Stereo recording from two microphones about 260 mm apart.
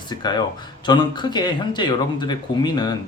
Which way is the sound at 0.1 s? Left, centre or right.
Centre.